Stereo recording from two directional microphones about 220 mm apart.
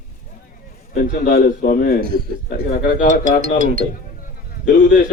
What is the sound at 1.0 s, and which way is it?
A man's voice, 40° left (ahead or behind).